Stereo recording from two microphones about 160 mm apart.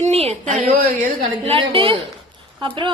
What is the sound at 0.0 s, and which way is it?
Speech, 40° right (ahead or behind).